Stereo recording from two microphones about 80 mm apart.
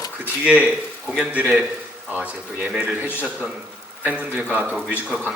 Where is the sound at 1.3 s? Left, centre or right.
Centre.